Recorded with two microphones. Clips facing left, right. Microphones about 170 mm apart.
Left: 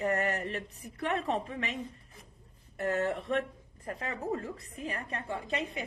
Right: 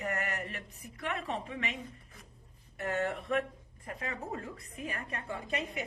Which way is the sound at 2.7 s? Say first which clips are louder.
Left 3 dB; 35° left (ahead or behind).